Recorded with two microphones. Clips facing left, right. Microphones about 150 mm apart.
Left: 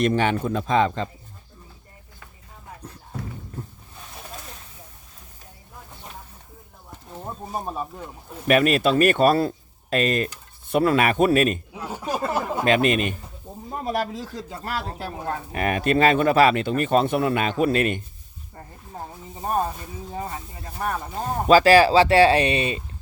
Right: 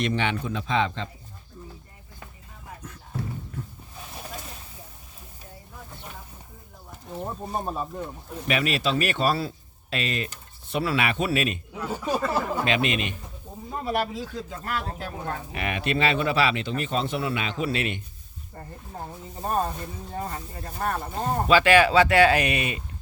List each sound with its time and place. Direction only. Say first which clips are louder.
0.0 s speech: left 5 dB; 45° left (ahead or behind)
7.1 s speech: right 1 dB; centre (ahead or behind)
8.4 s speech: left 7 dB; 50° left (ahead or behind)
11.7 s speech: right 1 dB; 15° left (ahead or behind)
12.3 s a sound: left 1 dB; 20° left (ahead or behind)
12.6 s speech: left 6 dB; 45° left (ahead or behind)
19.4 s speech: left 2 dB; 10° left (ahead or behind)
21.4 s speech: left 5 dB; 40° left (ahead or behind)